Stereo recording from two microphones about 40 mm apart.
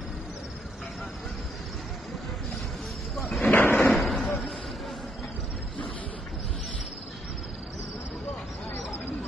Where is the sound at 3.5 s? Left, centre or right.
Left.